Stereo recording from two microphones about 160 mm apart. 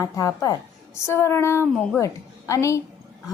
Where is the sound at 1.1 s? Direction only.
15° left (ahead or behind).